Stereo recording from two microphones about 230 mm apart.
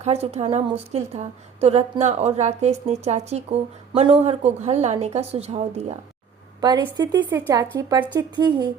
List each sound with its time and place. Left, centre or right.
0.0 s a woman's voice: right